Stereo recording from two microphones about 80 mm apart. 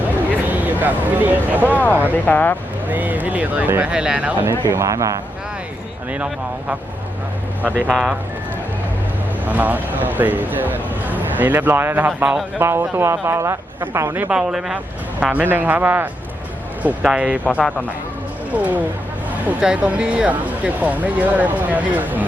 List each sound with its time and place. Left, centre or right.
0.4 s speech: right
1.7 s speech: left
2.9 s speech: right
4.7 s speech: right
6.1 s speech: centre
9.5 s speech: right
12.6 s a man's voice: right
14.2 s speech: centre
16.8 s speech: centre
17.6 s speech: centre
18.5 s speech: centre